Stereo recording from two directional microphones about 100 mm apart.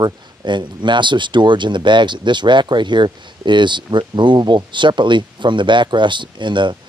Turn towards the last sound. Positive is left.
turn(degrees=-50)  # may be behind; listen again after turning